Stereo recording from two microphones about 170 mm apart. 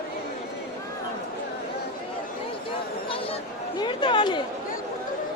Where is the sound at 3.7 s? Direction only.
25° left (ahead or behind).